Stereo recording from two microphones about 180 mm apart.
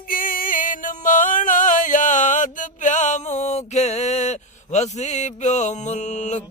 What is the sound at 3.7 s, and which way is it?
Mantra, 40° left (ahead or behind).